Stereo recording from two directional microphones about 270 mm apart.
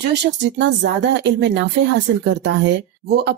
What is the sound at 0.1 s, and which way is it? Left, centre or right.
Speech, right.